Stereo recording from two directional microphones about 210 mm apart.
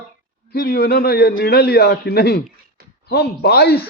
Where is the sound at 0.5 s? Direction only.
45° left (ahead or behind).